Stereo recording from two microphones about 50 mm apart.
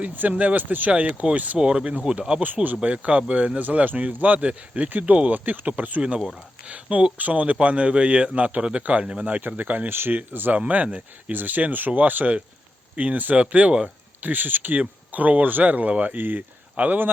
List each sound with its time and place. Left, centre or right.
0.0 s speech: right
0.9 s speech: right
1.5 s speech: centre
6.0 s speech: centre; by 9.9 s right
9.9 s speech: right
14.2 s speech: right
16.1 s speech: right